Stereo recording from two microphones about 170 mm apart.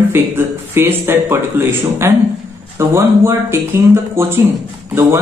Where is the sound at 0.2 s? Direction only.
15° right (ahead or behind).